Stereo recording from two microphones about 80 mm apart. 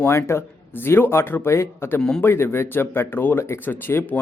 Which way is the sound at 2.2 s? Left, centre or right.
Left.